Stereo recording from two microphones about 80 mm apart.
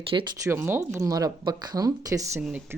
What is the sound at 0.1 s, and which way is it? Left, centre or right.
Speech, right.